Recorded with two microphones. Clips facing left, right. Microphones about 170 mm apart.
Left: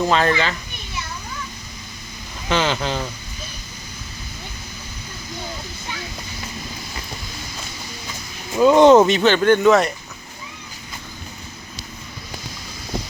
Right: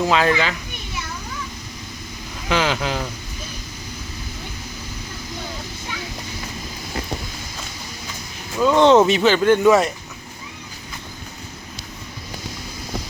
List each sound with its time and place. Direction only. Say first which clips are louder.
0.0 s speech: even; 5° right (ahead or behind)
2.5 s speech: even; 5° right (ahead or behind)
8.5 s speech: left 3 dB; 15° left (ahead or behind)
9.0 s speech: even; 5° right (ahead or behind)